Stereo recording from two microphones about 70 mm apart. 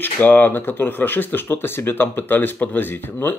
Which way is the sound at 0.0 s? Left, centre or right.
Left.